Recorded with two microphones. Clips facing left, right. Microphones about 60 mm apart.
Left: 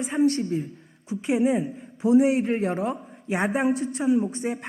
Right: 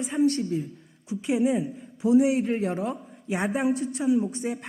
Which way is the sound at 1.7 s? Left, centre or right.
Left.